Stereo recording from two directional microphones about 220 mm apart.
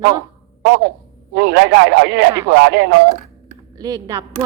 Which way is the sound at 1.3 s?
50° right (ahead or behind).